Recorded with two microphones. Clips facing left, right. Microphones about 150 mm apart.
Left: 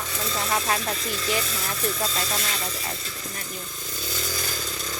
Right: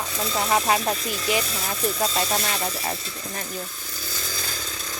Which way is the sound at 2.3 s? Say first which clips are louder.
Right 4 dB; 35° right (ahead or behind).